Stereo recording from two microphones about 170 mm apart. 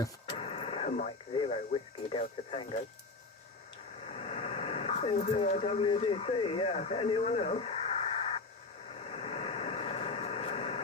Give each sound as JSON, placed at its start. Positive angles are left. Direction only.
{"t": 0.3, "sound": "a sound", "side_deg": 30}
{"t": 2.1, "sound": "speech", "side_deg": 35}
{"t": 4.1, "sound": "speech", "side_deg": 35}
{"t": 9.0, "sound": "vehicle", "side_deg": 35}